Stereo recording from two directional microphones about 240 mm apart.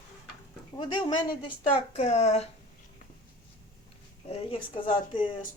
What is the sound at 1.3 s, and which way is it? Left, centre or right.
Speech, left.